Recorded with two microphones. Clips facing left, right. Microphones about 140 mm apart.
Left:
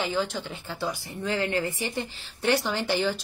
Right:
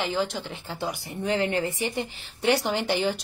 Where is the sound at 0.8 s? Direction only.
20° right (ahead or behind).